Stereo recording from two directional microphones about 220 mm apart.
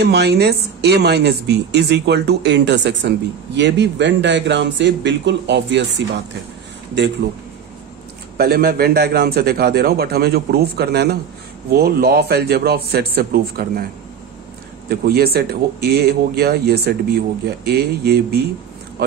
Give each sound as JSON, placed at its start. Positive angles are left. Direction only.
{"t": 0.0, "sound": "speech", "side_deg": -50}
{"t": 7.2, "sound": "speech", "side_deg": -50}
{"t": 14.9, "sound": "speech", "side_deg": -45}